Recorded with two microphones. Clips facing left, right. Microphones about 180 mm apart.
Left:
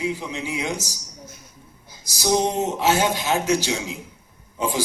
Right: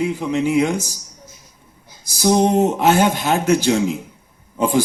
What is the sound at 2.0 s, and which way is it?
A man's voice, 55° right (ahead or behind).